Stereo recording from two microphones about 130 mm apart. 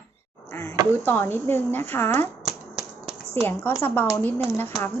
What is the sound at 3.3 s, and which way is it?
Speech, 15° left (ahead or behind).